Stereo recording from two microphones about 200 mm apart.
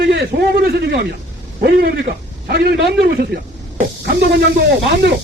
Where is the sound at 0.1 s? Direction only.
55° right (ahead or behind).